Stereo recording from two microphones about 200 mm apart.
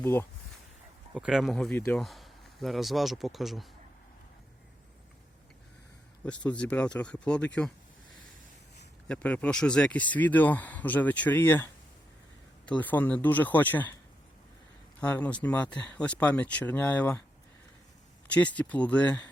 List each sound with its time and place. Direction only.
0.0 s speech: 10° left (ahead or behind)
1.1 s speech: centre (ahead or behind)
6.2 s speech: 5° left (ahead or behind)
9.0 s speech: 5° left (ahead or behind)
15.0 s speech: 5° left (ahead or behind)
18.3 s speech: 5° left (ahead or behind)